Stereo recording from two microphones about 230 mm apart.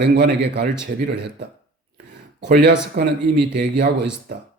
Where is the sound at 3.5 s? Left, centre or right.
Right.